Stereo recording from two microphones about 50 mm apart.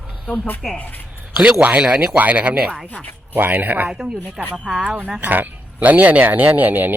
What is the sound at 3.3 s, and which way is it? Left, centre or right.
Speech, right.